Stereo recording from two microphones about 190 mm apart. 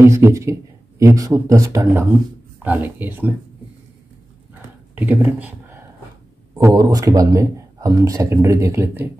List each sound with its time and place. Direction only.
0.0 s speech: 15° right (ahead or behind)
4.9 s speech: 10° right (ahead or behind)